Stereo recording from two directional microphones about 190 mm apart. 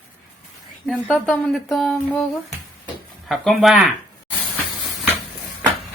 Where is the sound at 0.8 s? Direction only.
Centre (ahead or behind).